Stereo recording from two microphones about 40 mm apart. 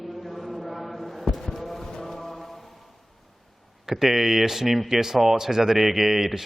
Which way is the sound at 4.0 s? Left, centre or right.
Centre.